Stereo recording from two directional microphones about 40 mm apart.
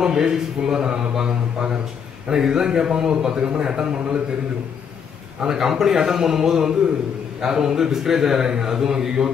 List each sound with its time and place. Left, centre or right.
0.0 s a man's voice: centre
3.3 s a man's voice: right
3.6 s a man's voice: centre
5.4 s a man's voice: centre